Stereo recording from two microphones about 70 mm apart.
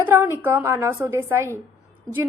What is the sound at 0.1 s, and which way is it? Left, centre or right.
A woman's voice, right.